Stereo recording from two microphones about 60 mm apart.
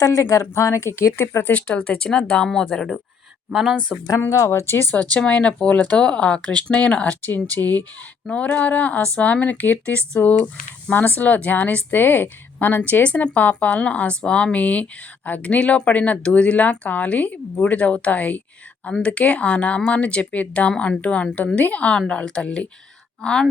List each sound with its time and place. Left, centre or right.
0.0 s speech: left
1.5 s speech: left
3.5 s speech: centre
4.3 s a woman's voice: left
4.6 s speech: left
5.1 s speech: left
8.3 s speech: left